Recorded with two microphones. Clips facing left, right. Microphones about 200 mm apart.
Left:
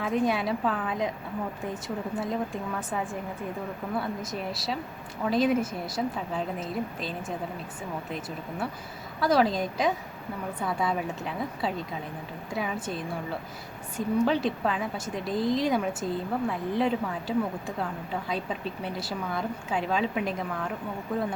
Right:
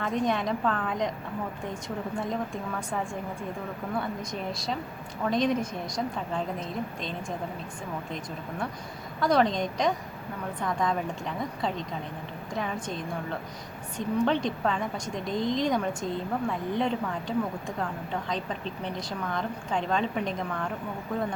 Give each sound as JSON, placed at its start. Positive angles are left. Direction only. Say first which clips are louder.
{"t": 0.0, "sound": "a woman's voice", "louder": "left 1 dB", "side_deg": 5}
{"t": 2.1, "sound": "a woman's voice", "louder": "left 1 dB", "side_deg": 5}